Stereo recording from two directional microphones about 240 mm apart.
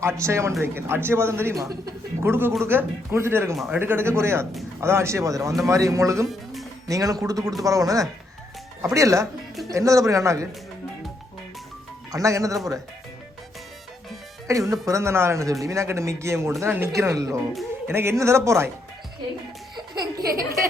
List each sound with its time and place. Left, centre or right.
0.0 s speech: centre
6.2 s music: centre
6.8 s speech: centre
12.1 s speech: centre
14.4 s speech: centre
19.7 s music: centre